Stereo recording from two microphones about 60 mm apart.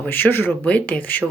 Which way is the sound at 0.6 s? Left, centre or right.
Left.